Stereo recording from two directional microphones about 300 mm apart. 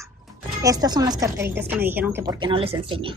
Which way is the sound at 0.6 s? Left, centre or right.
Centre.